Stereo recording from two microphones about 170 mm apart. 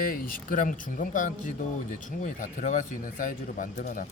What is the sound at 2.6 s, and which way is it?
Speech, 45° left (ahead or behind).